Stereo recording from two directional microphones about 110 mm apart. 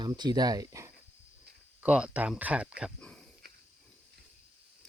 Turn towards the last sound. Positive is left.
turn(degrees=10)  # may be behind; listen again after turning